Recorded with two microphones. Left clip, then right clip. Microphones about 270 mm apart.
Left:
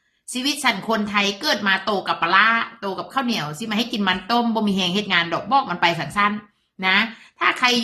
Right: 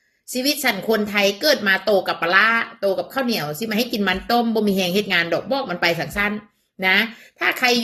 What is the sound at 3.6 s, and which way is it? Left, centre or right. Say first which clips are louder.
Speech: right 2 dB; centre.